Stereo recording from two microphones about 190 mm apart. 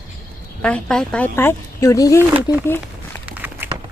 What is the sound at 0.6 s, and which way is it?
Speech, 5° left (ahead or behind).